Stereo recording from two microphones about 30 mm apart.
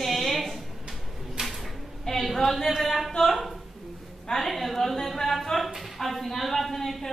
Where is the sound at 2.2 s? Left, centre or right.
Centre.